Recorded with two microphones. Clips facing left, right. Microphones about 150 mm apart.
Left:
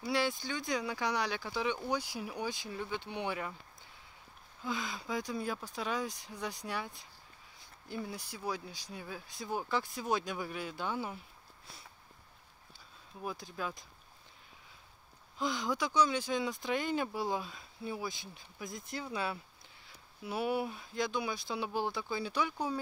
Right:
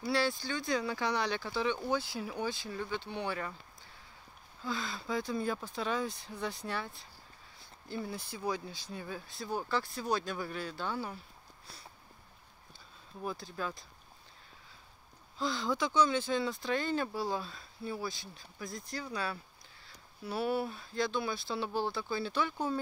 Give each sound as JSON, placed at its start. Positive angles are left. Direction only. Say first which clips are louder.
{"t": 0.0, "sound": "speech", "louder": "right 1 dB", "side_deg": 15}
{"t": 4.6, "sound": "speech", "louder": "right 1 dB", "side_deg": 15}
{"t": 13.2, "sound": "speech", "louder": "right 1 dB", "side_deg": 10}
{"t": 15.3, "sound": "speech", "louder": "right 1 dB", "side_deg": 15}